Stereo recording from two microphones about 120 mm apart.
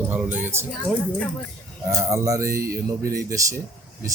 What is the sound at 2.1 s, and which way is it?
A man's voice, 25° right (ahead or behind).